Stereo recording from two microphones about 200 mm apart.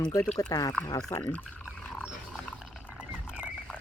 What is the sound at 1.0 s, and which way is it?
Speech, 5° left (ahead or behind).